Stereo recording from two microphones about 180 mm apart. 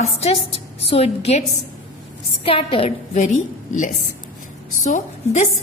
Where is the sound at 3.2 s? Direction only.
45° left (ahead or behind).